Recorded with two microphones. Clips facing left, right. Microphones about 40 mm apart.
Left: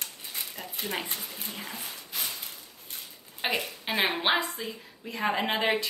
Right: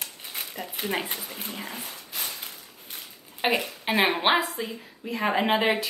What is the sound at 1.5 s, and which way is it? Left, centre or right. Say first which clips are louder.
Speech: right 3 dB; centre.